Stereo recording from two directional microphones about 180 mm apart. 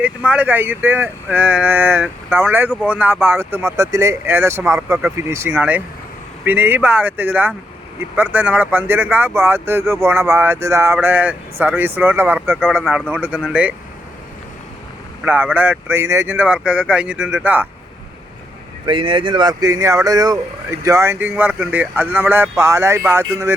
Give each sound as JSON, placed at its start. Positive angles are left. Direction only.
{"t": 0.0, "sound": "speech", "side_deg": -10}
{"t": 15.2, "sound": "speech", "side_deg": -10}
{"t": 18.9, "sound": "speech", "side_deg": -25}